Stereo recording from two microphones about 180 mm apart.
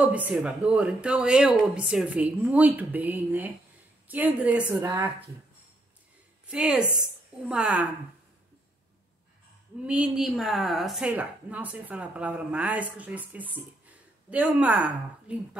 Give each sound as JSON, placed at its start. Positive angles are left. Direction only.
{"t": 0.0, "sound": "speech", "side_deg": -5}
{"t": 6.4, "sound": "a woman's voice", "side_deg": -5}
{"t": 9.8, "sound": "speech", "side_deg": -5}